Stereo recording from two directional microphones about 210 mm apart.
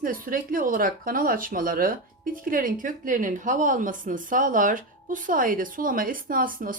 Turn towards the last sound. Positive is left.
turn(degrees=-40)  # may be behind; listen again after turning